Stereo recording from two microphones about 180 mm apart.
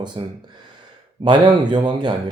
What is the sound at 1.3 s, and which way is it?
Speech, 25° right (ahead or behind).